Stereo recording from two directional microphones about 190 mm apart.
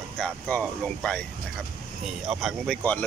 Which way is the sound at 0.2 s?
5° left (ahead or behind).